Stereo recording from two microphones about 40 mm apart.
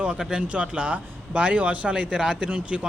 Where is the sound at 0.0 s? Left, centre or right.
Right.